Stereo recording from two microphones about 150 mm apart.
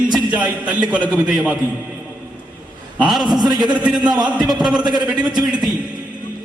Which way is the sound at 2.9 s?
5° right (ahead or behind).